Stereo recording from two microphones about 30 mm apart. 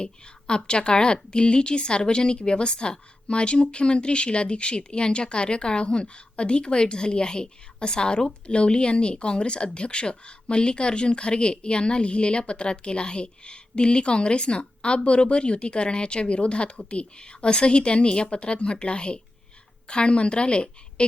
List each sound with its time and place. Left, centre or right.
0.0 s a woman's voice: left